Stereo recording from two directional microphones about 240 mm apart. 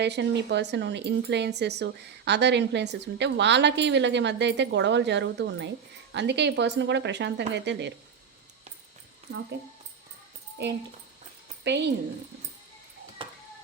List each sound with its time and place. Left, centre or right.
0.0 s speech: right
11.6 s a woman's voice: right